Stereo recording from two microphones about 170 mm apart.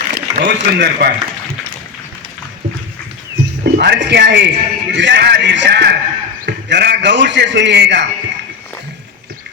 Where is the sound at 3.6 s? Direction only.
75° right (ahead or behind).